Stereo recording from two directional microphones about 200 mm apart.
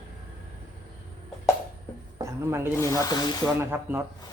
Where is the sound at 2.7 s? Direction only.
15° left (ahead or behind).